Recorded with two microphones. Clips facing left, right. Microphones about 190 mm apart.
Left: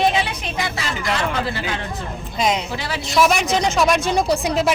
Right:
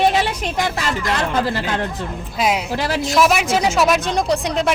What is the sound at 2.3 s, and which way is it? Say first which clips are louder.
Speech: right 1 dB; 5° right (ahead or behind).